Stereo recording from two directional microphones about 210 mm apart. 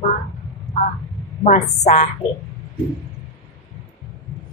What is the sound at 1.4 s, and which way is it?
Speech, 30° left (ahead or behind).